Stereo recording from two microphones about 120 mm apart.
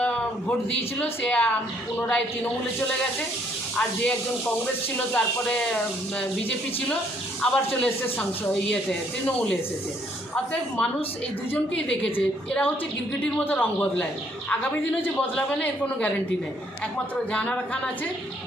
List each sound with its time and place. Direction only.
0.0 s a sound: 10° left (ahead or behind)
1.2 s a woman's voice: 10° left (ahead or behind)
3.8 s a woman's voice: 10° left (ahead or behind)
7.5 s a woman's voice: 10° left (ahead or behind)
10.3 s a woman's voice: 15° left (ahead or behind)
15.0 s a woman's voice: 10° left (ahead or behind)
17.3 s a woman's voice: 10° left (ahead or behind)